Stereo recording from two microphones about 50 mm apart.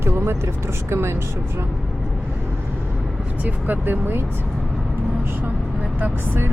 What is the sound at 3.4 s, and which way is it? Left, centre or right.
Speech, right.